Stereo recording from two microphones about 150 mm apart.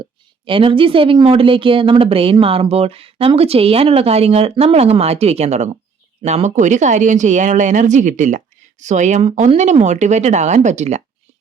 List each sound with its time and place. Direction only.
0.0 s speech: 35° right (ahead or behind)